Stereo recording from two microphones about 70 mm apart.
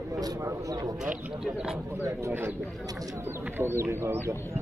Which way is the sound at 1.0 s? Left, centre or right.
Centre.